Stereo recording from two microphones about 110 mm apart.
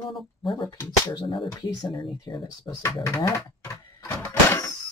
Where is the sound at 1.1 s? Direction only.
45° left (ahead or behind).